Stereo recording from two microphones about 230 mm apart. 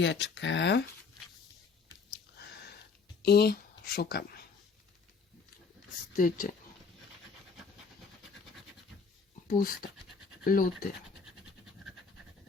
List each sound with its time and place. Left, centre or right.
0.0 s speech: left
3.2 s speech: left
6.1 s speech: left
9.5 s speech: left